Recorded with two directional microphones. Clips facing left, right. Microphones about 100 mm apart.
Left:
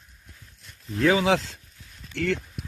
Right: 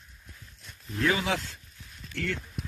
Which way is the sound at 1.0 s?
90° left.